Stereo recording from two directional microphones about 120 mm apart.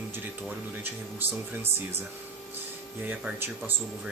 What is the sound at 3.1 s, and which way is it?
Speech, 15° right (ahead or behind).